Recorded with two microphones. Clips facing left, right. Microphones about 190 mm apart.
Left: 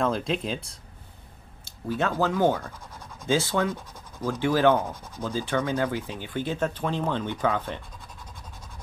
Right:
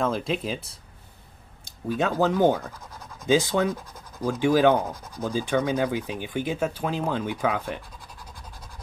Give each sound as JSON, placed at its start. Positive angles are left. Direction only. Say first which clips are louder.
{"t": 0.0, "sound": "speech", "louder": "even", "side_deg": 0}
{"t": 1.6, "sound": "speech", "louder": "right 2 dB", "side_deg": -15}